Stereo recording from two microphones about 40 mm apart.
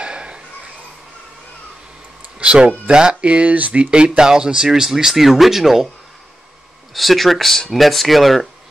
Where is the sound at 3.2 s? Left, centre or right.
Right.